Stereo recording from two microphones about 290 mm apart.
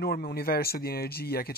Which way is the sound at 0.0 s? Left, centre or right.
Left.